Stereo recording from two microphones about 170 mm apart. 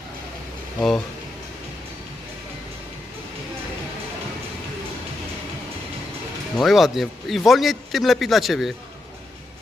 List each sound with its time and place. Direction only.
0.8 s speech: 5° left (ahead or behind)
6.6 s speech: centre (ahead or behind)